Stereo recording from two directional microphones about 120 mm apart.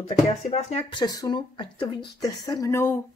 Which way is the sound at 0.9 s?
35° left (ahead or behind).